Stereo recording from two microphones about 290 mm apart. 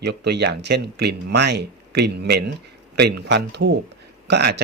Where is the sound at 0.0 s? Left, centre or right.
Right.